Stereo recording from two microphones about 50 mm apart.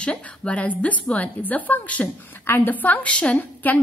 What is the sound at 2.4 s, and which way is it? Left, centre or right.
Speech, left.